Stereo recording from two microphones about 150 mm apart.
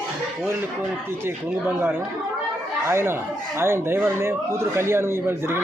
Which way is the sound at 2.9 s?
15° right (ahead or behind).